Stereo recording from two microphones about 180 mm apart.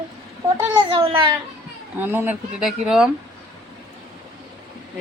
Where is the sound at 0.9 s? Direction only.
25° right (ahead or behind).